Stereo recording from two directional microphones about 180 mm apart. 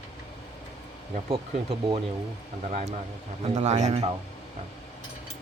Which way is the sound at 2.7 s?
40° right (ahead or behind).